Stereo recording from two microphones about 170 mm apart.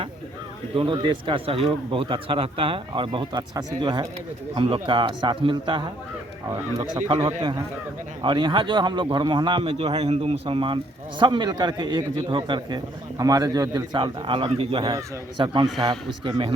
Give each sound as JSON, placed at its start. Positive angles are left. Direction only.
{"t": 0.8, "sound": "a man's voice", "side_deg": -30}